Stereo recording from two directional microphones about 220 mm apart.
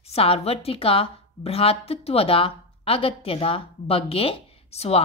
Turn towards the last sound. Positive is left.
turn(degrees=25)  # may be behind; listen again after turning